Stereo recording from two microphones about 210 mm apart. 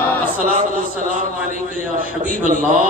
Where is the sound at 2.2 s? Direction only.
35° right (ahead or behind).